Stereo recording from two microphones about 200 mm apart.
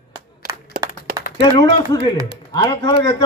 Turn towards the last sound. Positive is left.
turn(degrees=20)  # may be behind; listen again after turning